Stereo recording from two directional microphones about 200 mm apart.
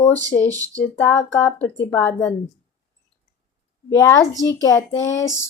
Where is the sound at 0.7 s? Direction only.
10° left (ahead or behind).